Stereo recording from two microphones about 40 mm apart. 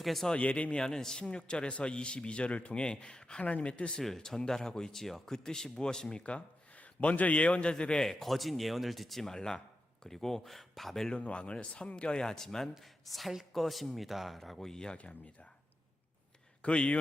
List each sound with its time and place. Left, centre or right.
0.0 s speech: centre
0.3 s a man's voice: left
0.8 s speech: centre
3.4 s speech: left
4.2 s speech: centre
8.0 s speech: centre
9.3 s speech: centre
11.1 s speech: left; by 12.7 s centre
12.7 s speech: centre
16.6 s a man's voice: left